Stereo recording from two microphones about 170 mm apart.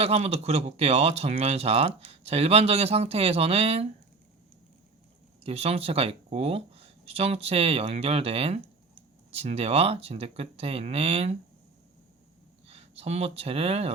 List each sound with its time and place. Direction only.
0.0 s speech: 35° right (ahead or behind)
5.4 s speech: 35° right (ahead or behind)
12.6 s speech: 35° right (ahead or behind)